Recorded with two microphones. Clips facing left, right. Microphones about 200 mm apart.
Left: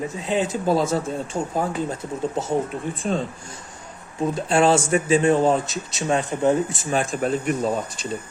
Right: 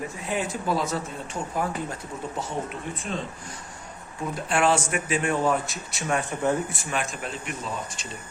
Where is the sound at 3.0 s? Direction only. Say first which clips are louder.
Left 8 dB; 35° left (ahead or behind).